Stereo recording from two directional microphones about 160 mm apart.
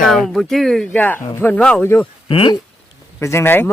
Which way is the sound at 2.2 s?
35° left (ahead or behind).